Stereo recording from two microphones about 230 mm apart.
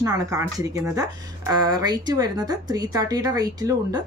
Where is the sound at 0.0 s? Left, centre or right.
Centre.